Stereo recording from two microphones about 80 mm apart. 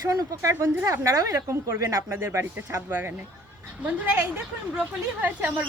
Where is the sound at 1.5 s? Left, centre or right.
Right.